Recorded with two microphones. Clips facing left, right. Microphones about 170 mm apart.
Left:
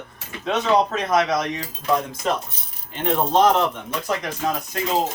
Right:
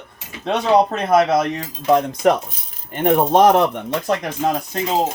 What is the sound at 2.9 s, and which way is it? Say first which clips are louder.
Speech: right 5 dB; 55° right (ahead or behind).